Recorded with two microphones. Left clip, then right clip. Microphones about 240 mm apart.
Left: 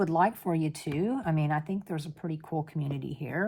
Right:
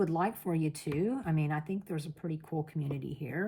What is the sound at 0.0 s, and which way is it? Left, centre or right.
Speech, left.